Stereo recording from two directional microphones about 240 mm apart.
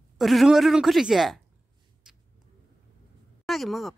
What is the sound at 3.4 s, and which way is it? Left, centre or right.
Speech, centre.